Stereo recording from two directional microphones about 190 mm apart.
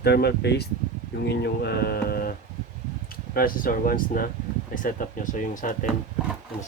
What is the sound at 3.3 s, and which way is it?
Speech, 50° left (ahead or behind).